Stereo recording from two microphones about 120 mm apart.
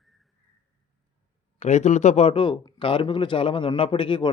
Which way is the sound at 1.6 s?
70° left (ahead or behind).